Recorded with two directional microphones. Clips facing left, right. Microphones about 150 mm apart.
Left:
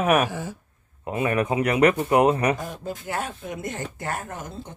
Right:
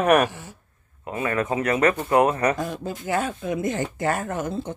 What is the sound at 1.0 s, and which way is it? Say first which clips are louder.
A man's voice: left 2 dB; 20° left (ahead or behind).